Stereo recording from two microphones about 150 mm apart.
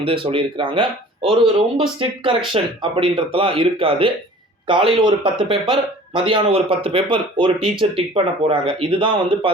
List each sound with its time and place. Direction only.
0.0 s speech: 35° right (ahead or behind)